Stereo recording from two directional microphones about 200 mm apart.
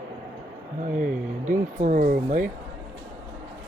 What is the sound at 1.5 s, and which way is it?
Speech, 40° right (ahead or behind).